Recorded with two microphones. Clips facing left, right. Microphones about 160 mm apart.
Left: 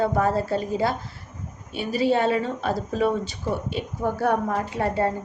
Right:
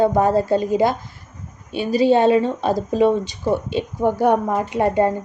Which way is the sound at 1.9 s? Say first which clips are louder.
Right 7 dB; 20° right (ahead or behind).